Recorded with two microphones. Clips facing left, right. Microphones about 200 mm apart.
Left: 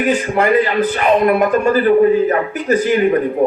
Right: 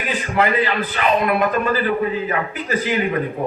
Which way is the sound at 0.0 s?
50° left (ahead or behind).